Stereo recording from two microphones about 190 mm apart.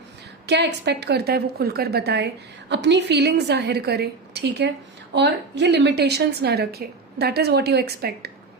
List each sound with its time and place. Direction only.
0.4 s a woman's voice: 65° right (ahead or behind)